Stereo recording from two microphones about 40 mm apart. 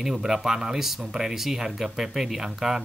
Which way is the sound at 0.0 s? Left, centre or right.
Centre.